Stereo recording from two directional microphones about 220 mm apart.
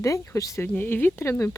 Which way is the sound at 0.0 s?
15° left (ahead or behind).